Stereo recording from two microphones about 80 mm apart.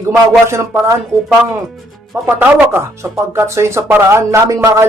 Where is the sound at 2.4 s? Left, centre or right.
Right.